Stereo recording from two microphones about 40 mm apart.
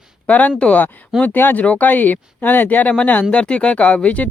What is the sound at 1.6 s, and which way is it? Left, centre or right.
Speech, left.